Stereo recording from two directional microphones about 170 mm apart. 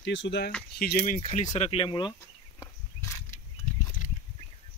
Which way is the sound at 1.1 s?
40° left (ahead or behind).